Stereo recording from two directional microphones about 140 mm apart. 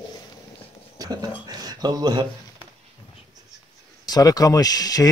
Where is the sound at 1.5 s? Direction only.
30° right (ahead or behind).